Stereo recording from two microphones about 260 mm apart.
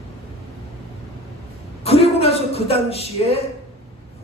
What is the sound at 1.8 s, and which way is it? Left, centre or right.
A woman's voice, left.